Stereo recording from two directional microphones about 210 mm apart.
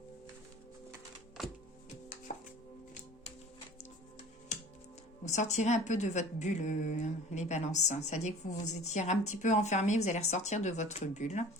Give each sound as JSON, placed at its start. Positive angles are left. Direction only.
{"t": 1.4, "sound": "music", "side_deg": 0}
{"t": 5.2, "sound": "a woman's voice", "side_deg": 35}